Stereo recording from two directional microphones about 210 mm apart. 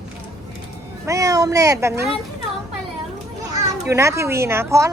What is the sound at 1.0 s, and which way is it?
Speech, 15° right (ahead or behind).